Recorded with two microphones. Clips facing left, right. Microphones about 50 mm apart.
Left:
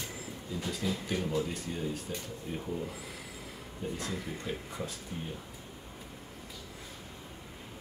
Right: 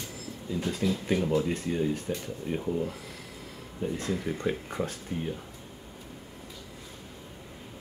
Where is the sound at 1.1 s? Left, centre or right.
Right.